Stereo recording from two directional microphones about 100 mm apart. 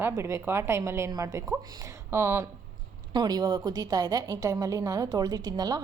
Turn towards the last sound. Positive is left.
turn(degrees=-40)  # may be behind; listen again after turning